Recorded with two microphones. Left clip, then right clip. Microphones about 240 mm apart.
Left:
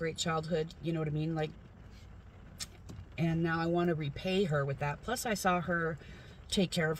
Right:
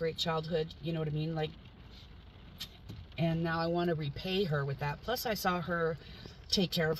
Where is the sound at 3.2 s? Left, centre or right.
Centre.